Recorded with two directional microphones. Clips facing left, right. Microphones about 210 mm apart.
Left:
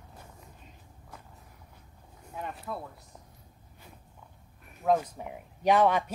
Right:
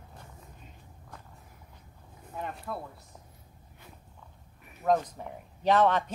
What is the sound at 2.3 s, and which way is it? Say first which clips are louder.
Speech: right 1 dB; centre (ahead or behind).